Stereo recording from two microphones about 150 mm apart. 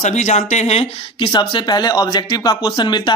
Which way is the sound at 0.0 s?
50° left (ahead or behind).